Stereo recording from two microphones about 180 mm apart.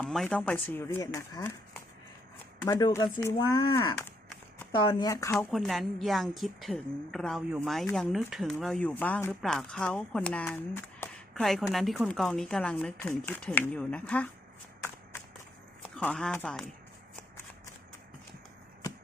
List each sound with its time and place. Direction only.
0.0 s speech: 5° left (ahead or behind)
2.6 s speech: 15° left (ahead or behind)
5.3 s speech: centre (ahead or behind)
16.0 s speech: 5° left (ahead or behind)